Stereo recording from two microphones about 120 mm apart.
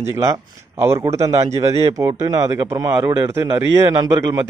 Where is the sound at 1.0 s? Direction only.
65° right (ahead or behind).